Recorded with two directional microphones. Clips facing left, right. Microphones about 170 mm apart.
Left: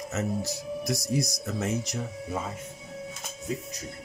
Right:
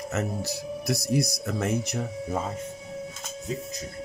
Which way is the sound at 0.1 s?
65° right (ahead or behind).